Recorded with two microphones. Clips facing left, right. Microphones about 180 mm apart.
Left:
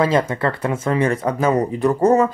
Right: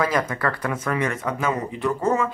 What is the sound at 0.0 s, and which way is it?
Speech, 25° left (ahead or behind).